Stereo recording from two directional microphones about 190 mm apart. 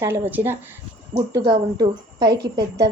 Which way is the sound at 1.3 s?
20° right (ahead or behind).